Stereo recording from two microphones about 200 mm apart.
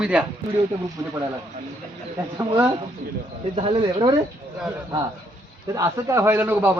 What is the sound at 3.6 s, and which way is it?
Speech, 25° right (ahead or behind).